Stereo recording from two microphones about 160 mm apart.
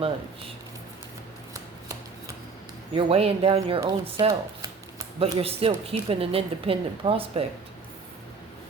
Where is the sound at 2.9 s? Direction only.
35° right (ahead or behind).